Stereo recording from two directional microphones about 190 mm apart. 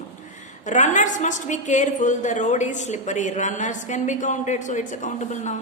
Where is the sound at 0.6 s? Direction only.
40° left (ahead or behind).